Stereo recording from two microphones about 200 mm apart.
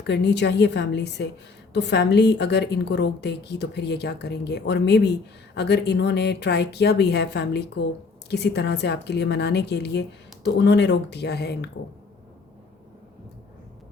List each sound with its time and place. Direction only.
0.0 s a woman's voice: 55° left (ahead or behind)